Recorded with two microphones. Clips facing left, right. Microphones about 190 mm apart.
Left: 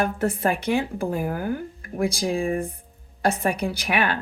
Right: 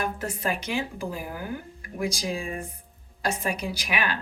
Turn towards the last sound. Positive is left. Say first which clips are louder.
# left 5 dB
turn(degrees=55)  # may be behind; listen again after turning